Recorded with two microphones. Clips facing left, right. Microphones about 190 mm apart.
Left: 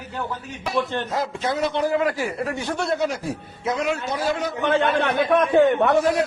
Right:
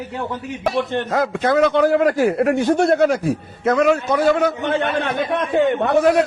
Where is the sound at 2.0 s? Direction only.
50° right (ahead or behind).